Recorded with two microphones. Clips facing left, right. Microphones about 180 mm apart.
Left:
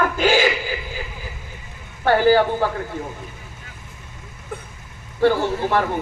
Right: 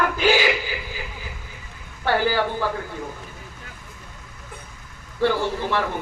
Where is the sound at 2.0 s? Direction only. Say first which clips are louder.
Left 6 dB; 45° left (ahead or behind).